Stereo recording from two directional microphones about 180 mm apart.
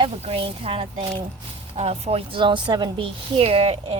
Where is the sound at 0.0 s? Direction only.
30° right (ahead or behind).